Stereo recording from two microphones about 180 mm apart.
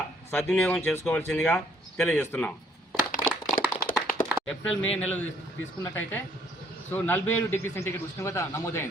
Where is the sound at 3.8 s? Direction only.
55° left (ahead or behind).